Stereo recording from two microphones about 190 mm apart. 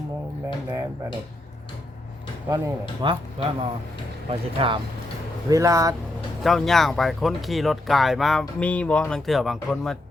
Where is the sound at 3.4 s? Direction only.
30° right (ahead or behind).